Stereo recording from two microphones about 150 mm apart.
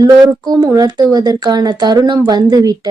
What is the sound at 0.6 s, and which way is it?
Speech, 25° right (ahead or behind).